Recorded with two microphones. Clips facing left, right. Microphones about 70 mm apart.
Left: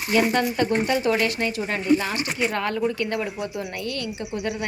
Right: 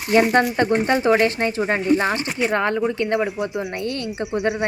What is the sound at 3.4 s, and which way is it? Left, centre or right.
Speech, right.